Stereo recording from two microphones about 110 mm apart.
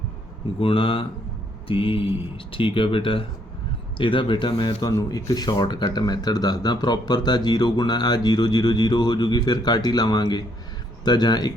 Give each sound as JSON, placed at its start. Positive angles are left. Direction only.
{"t": 0.6, "sound": "speech", "side_deg": 55}